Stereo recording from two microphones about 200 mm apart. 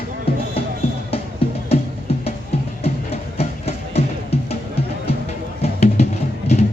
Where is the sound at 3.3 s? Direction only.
30° left (ahead or behind).